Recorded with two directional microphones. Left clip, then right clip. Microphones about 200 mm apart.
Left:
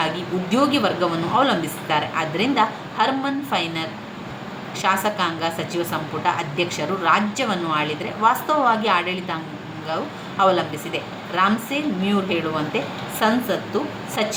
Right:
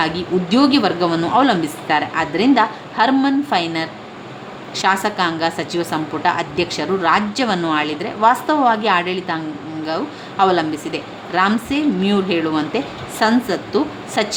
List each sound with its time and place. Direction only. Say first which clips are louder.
0.5 s a woman's voice: right 3 dB; 35° right (ahead or behind)